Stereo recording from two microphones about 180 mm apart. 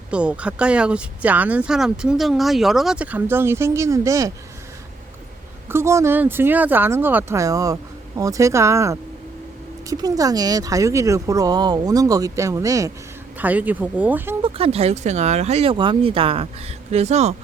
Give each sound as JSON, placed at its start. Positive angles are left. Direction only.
{"t": 0.1, "sound": "speech", "side_deg": -5}
{"t": 5.6, "sound": "speech", "side_deg": -15}
{"t": 14.4, "sound": "speech", "side_deg": -35}